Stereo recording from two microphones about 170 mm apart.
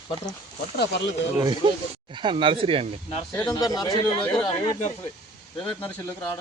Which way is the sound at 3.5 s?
20° left (ahead or behind).